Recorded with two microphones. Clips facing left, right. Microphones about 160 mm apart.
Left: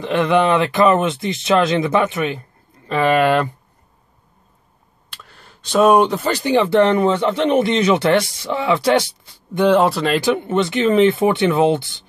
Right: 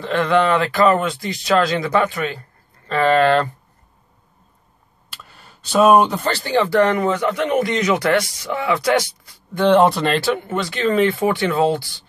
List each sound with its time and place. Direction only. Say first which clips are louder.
0.0 s speech: left 1 dB; 20° left (ahead or behind)
5.1 s a sound: even; 5° right (ahead or behind)
6.3 s speech: left 3 dB; 20° left (ahead or behind)
9.7 s speech: right 1 dB; centre (ahead or behind)
10.2 s speech: left 4 dB; 20° left (ahead or behind)